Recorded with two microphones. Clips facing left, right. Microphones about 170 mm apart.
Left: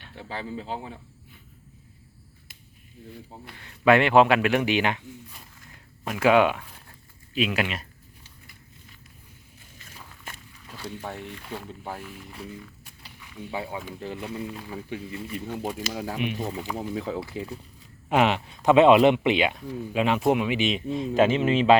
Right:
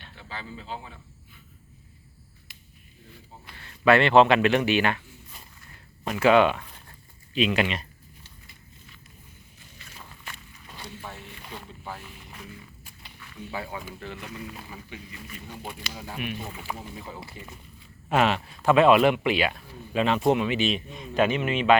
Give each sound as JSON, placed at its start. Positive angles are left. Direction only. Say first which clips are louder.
{"t": 0.6, "sound": "speech", "louder": "left 4 dB", "side_deg": 20}
{"t": 3.6, "sound": "speech", "louder": "left 1 dB", "side_deg": 15}
{"t": 6.2, "sound": "speech", "louder": "even", "side_deg": 10}
{"t": 7.3, "sound": "a sound", "louder": "right 2 dB", "side_deg": 5}
{"t": 10.3, "sound": "walk", "louder": "left 1 dB", "side_deg": 50}
{"t": 13.1, "sound": "a sound", "louder": "left 2 dB", "side_deg": 15}
{"t": 14.0, "sound": "speech", "louder": "left 5 dB", "side_deg": 30}
{"t": 15.6, "sound": "speech", "louder": "left 6 dB", "side_deg": 40}
{"t": 15.9, "sound": "speech", "louder": "left 1 dB", "side_deg": 80}
{"t": 18.1, "sound": "speech", "louder": "left 1 dB", "side_deg": 15}